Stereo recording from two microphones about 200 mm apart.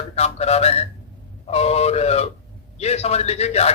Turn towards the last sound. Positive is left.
turn(degrees=30)  # may be behind; listen again after turning